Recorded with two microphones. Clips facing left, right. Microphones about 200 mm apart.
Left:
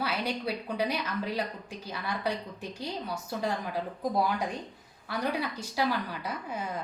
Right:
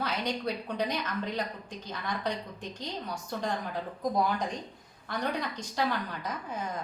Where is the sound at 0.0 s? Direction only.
10° left (ahead or behind).